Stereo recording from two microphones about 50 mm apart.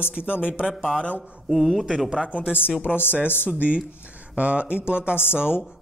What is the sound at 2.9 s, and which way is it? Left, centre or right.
Speech, left.